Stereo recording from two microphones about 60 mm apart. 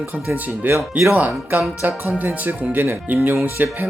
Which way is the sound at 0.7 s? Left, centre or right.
Right.